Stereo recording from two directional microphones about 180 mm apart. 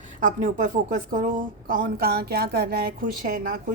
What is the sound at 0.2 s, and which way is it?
A woman's voice, 45° right (ahead or behind).